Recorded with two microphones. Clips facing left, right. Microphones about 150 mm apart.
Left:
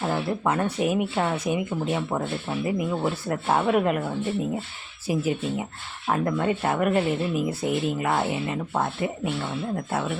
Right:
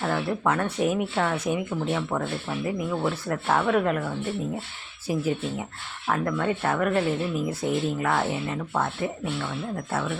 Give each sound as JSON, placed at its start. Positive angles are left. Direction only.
{"t": 0.0, "sound": "speech", "side_deg": 10}
{"t": 6.1, "sound": "speech", "side_deg": 20}